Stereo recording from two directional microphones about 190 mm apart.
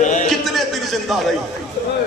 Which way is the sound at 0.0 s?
40° left (ahead or behind).